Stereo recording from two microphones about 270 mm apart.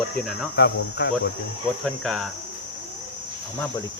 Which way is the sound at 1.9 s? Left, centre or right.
Centre.